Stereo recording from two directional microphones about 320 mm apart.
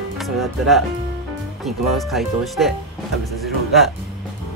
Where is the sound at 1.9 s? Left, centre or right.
Centre.